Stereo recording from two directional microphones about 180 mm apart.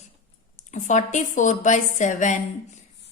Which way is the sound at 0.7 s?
45° left (ahead or behind).